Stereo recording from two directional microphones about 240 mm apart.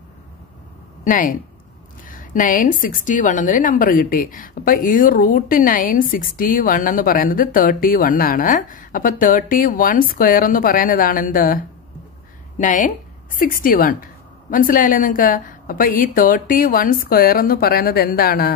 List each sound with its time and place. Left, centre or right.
1.0 s a woman's voice: left